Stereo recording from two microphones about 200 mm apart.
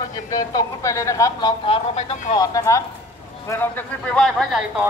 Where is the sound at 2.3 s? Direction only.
15° left (ahead or behind).